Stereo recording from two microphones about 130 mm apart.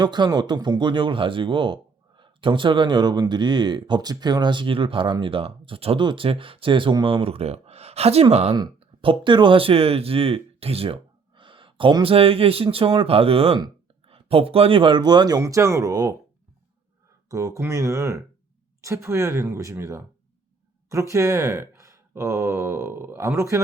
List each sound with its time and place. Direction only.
0.0 s speech: 35° right (ahead or behind)
17.2 s speech: 25° right (ahead or behind)